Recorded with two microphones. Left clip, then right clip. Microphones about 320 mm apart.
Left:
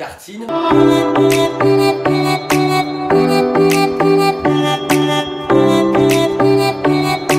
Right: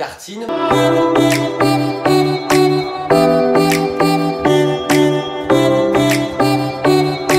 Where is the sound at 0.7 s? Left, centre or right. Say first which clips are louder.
Left 1 dB; centre.